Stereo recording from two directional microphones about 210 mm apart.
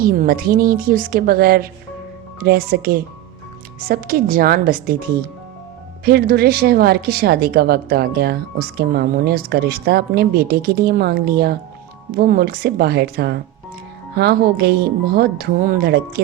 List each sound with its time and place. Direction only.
0.0 s a woman's voice: 45° right (ahead or behind)
6.1 s a woman's voice: 45° right (ahead or behind)